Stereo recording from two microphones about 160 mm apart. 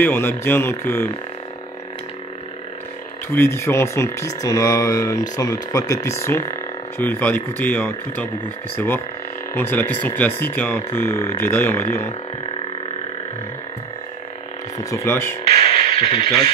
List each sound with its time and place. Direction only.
0.0 s speech: 15° left (ahead or behind)
3.3 s speech: 15° left (ahead or behind)
14.8 s speech: 20° left (ahead or behind)
15.4 s music: 35° left (ahead or behind)